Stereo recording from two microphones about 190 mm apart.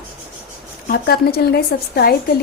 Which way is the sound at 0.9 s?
55° left (ahead or behind).